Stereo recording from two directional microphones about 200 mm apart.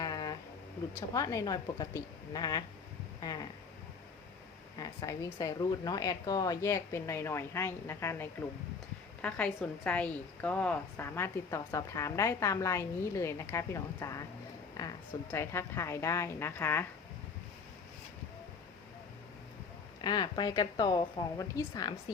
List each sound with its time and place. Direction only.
0.0 s a sound: 20° left (ahead or behind)
1.1 s a woman's voice: 15° left (ahead or behind)
4.8 s a woman's voice: 15° left (ahead or behind)
20.0 s a woman's voice: 20° left (ahead or behind)